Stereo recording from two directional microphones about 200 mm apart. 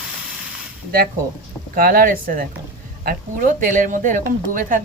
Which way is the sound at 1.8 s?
45° right (ahead or behind).